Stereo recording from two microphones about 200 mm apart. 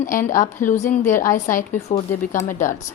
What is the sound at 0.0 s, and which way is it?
A woman's voice, 40° left (ahead or behind).